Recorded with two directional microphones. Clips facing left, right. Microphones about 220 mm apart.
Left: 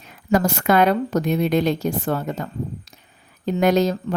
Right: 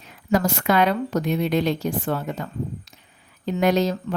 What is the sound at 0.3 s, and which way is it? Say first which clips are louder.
A woman's voice: left 2 dB; 50° left (ahead or behind).